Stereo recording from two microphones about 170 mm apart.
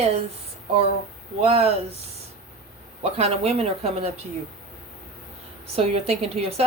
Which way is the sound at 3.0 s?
35° right (ahead or behind).